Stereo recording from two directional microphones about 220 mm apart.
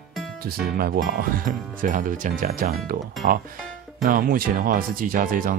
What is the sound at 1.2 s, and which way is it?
Speech, 40° right (ahead or behind).